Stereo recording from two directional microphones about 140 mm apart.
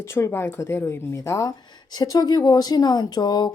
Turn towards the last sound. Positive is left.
turn(degrees=30)  # may be behind; listen again after turning